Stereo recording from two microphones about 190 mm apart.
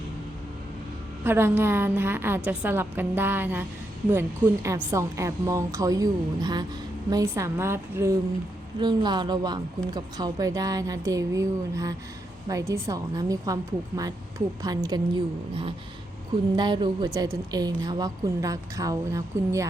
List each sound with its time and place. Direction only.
1.2 s a woman's voice: 10° right (ahead or behind)